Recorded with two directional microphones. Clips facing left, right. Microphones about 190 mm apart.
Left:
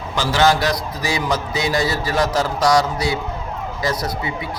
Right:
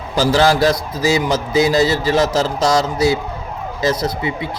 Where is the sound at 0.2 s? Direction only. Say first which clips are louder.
Right 4 dB; 35° right (ahead or behind).